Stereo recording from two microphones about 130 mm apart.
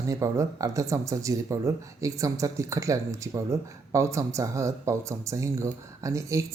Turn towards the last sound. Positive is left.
turn(degrees=-25)  # may be behind; listen again after turning